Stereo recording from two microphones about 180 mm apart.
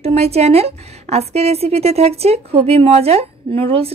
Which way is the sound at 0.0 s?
35° right (ahead or behind).